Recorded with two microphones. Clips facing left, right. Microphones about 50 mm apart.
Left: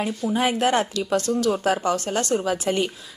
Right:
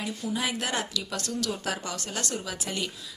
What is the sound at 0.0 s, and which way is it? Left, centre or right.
Speech, left.